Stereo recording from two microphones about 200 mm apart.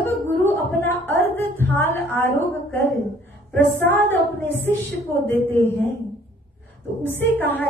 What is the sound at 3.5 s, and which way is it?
Speech, 60° right (ahead or behind).